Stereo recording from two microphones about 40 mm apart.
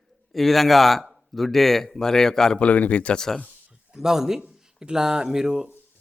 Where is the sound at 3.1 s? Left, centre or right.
Centre.